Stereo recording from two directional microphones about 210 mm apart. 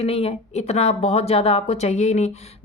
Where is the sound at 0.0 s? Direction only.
30° left (ahead or behind).